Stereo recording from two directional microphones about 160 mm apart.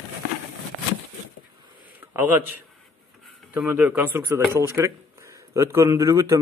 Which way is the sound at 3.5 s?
10° right (ahead or behind).